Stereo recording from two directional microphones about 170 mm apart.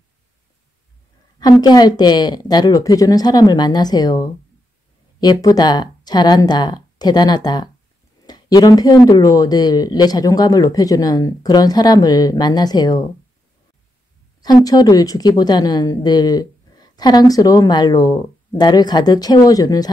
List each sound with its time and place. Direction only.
1.4 s a woman's voice: 25° left (ahead or behind)
14.4 s a woman's voice: 25° left (ahead or behind)